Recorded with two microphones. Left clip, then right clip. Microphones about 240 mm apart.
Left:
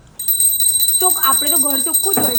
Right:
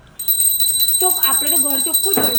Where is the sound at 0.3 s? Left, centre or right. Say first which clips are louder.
Even; centre.